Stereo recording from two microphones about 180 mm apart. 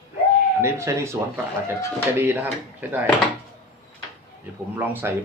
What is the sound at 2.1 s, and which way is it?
Speech, 10° right (ahead or behind).